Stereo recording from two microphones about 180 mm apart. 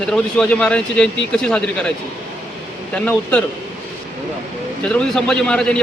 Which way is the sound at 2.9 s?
5° left (ahead or behind).